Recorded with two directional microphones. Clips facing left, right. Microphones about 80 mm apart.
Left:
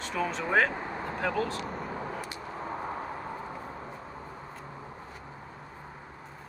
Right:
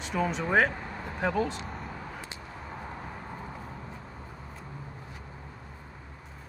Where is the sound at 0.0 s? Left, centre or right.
Centre.